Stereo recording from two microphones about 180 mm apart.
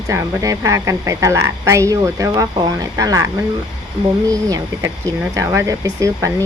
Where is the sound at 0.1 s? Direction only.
15° right (ahead or behind).